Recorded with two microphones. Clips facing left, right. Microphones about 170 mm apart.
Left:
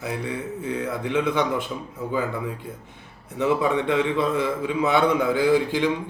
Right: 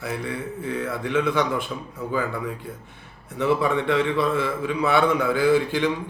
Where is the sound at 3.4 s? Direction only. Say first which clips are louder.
Even; 20° left (ahead or behind).